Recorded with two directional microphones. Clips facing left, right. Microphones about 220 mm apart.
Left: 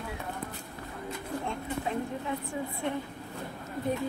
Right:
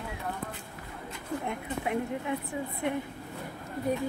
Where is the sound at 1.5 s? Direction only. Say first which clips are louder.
Right 2 dB; 15° right (ahead or behind).